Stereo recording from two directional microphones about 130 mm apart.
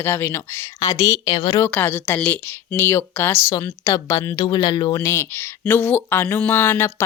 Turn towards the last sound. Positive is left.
turn(degrees=20)  # may be behind; listen again after turning